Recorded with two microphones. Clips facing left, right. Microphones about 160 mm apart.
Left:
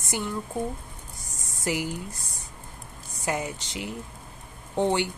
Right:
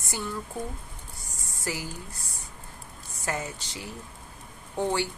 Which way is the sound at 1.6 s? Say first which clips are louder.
Left 6 dB; 15° left (ahead or behind).